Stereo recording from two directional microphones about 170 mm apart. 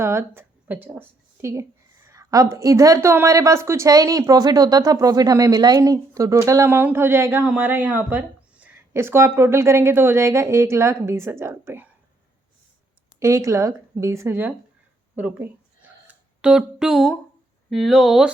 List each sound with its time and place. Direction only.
0.0 s a woman's voice: 15° right (ahead or behind)
13.1 s a woman's voice: 20° right (ahead or behind); by 18.3 s centre (ahead or behind)